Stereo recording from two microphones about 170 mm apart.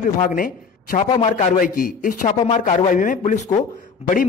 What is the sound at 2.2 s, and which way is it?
A man's voice, 40° left (ahead or behind).